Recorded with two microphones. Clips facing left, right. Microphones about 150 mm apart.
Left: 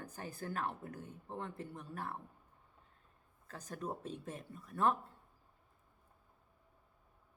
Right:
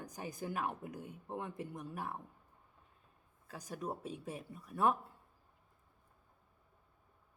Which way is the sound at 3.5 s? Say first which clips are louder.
Right 1 dB; 10° right (ahead or behind).